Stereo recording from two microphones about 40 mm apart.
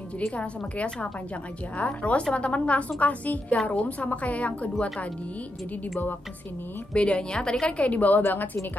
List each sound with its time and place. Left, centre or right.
0.4 s a woman's voice: left
6.9 s a woman's voice: left